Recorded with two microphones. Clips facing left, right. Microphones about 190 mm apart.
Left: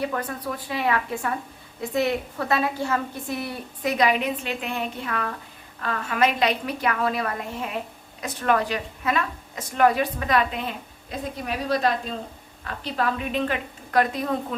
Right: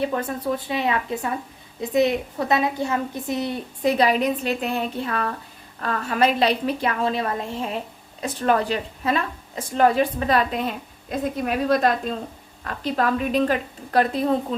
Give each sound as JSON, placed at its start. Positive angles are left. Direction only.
{"t": 0.0, "sound": "a woman's voice", "side_deg": -25}
{"t": 11.4, "sound": "a woman's voice", "side_deg": -50}